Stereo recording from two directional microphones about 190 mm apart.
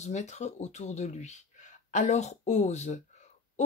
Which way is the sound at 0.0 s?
35° left (ahead or behind).